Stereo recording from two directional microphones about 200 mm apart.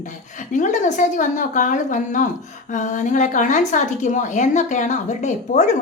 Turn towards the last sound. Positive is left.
turn(degrees=35)  # may be behind; listen again after turning